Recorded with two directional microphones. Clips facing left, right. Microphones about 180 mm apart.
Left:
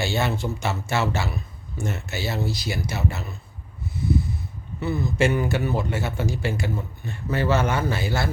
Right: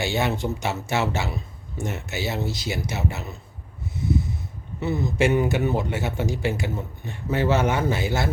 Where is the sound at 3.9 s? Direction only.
20° right (ahead or behind).